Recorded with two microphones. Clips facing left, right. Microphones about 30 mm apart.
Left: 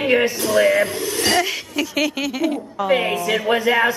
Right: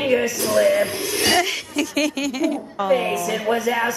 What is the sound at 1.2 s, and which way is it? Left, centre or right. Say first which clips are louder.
Speech: even; centre.